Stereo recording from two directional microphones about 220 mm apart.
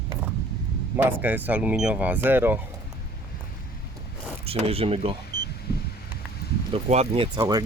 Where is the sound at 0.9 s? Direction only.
10° right (ahead or behind).